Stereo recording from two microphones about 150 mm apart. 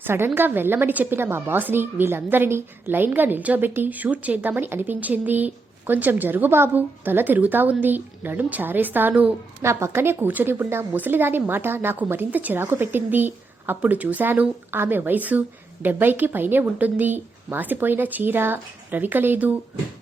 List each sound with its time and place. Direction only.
0.0 s a woman's voice: 15° right (ahead or behind)